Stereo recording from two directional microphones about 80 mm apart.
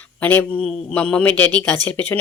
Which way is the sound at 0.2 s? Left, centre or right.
Centre.